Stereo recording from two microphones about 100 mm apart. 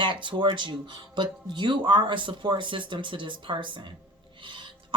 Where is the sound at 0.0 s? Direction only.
55° right (ahead or behind).